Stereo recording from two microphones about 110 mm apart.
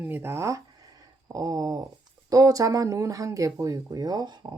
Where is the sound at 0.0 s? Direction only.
20° right (ahead or behind).